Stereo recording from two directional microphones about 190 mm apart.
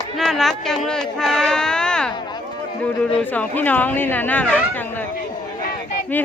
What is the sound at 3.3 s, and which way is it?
Speech, 10° left (ahead or behind).